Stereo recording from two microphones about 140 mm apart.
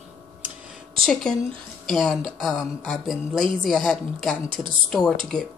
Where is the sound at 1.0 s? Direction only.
5° left (ahead or behind).